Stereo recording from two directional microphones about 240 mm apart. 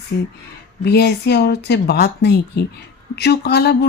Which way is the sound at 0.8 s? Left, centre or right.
Left.